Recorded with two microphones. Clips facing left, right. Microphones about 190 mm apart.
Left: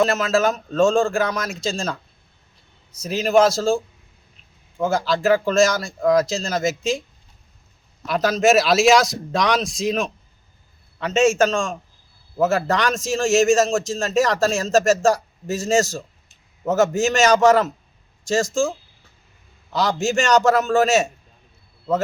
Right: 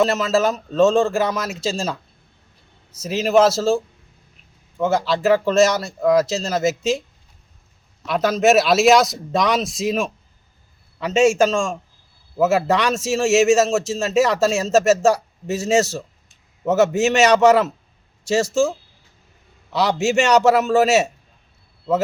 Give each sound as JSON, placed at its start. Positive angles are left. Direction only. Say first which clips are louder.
{"t": 0.0, "sound": "a man's voice", "louder": "right 1 dB", "side_deg": 0}
{"t": 8.0, "sound": "a man's voice", "louder": "right 1 dB", "side_deg": 0}
{"t": 19.7, "sound": "a man's voice", "louder": "right 2 dB", "side_deg": -5}